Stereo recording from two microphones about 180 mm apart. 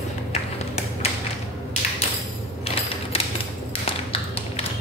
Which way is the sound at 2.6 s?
35° left (ahead or behind).